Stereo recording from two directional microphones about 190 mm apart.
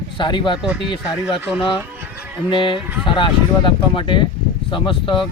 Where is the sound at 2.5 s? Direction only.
25° left (ahead or behind).